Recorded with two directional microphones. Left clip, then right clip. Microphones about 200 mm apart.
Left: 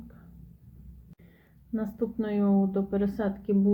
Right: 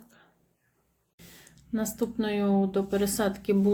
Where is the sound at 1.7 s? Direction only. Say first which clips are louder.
Right 1 dB; 10° right (ahead or behind).